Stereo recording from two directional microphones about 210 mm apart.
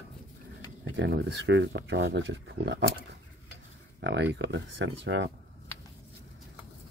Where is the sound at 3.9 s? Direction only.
55° right (ahead or behind).